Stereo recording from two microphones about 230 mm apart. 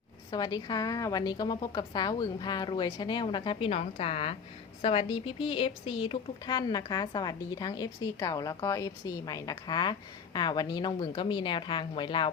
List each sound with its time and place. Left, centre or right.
0.3 s a woman's voice: centre